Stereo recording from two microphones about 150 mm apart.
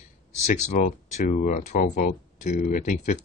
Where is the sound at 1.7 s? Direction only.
75° left (ahead or behind); by 3.2 s 60° left (ahead or behind).